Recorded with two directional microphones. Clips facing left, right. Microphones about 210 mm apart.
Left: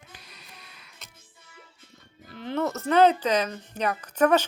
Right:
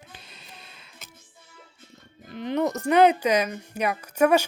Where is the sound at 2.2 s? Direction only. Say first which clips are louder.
Right 3 dB; 20° right (ahead or behind).